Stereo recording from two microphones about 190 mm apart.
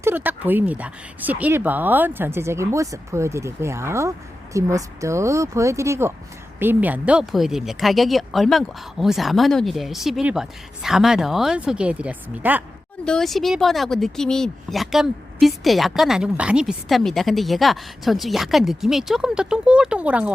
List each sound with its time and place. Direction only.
0.0 s speech: 10° right (ahead or behind)
13.1 s speech: centre (ahead or behind)